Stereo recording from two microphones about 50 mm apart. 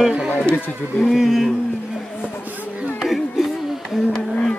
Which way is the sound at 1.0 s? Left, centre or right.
Centre.